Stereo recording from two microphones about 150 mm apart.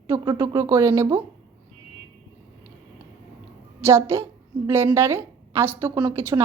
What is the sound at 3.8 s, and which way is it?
A woman's voice, 15° right (ahead or behind).